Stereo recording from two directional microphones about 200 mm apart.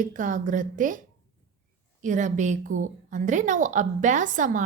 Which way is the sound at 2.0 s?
40° right (ahead or behind).